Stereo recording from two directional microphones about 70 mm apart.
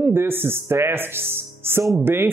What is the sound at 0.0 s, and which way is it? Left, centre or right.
Speech, right.